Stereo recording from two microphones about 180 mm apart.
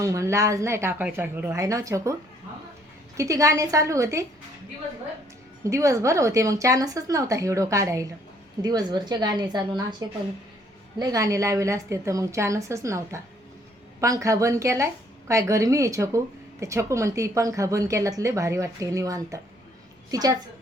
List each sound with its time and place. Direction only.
0.0 s speech: 15° right (ahead or behind)
3.2 s speech: 20° right (ahead or behind)
5.6 s a woman's voice: 15° right (ahead or behind)
11.0 s a woman's voice: 20° right (ahead or behind)